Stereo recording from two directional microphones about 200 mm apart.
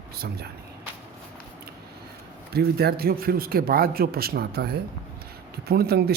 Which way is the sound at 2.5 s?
50° right (ahead or behind).